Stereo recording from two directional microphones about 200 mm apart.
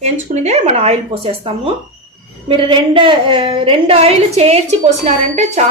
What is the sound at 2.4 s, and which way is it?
A woman's voice, 25° right (ahead or behind).